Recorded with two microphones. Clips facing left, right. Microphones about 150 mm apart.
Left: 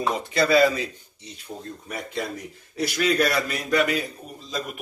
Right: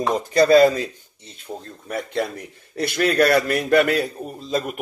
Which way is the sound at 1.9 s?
55° right (ahead or behind).